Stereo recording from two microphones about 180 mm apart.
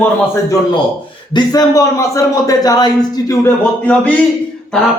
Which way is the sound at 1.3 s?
20° left (ahead or behind).